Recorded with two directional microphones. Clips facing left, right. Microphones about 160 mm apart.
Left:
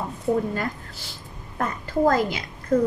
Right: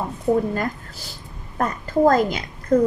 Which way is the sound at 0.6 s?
40° right (ahead or behind).